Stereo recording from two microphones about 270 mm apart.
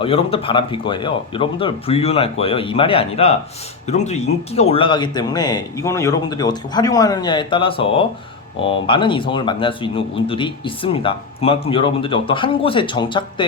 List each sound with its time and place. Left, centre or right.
0.0 s speech: left